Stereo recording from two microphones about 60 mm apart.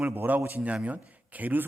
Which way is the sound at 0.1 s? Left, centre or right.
Right.